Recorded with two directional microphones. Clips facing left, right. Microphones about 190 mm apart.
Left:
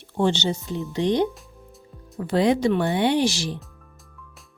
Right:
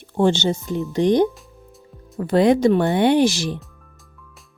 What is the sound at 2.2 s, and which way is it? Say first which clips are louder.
Speech: right 5 dB; 55° right (ahead or behind).